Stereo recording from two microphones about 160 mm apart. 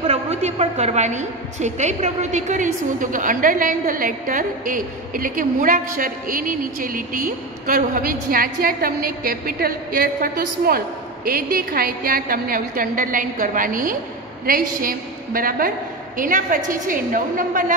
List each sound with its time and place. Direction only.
0.0 s a woman's voice: 40° right (ahead or behind); by 17.7 s 55° right (ahead or behind)